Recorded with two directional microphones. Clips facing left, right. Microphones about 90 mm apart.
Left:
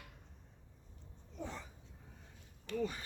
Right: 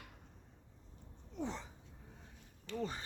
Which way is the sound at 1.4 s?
20° right (ahead or behind).